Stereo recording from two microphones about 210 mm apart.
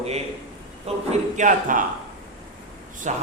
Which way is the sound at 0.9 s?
30° right (ahead or behind).